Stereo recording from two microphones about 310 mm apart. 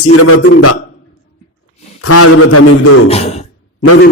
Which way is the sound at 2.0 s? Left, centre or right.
Left.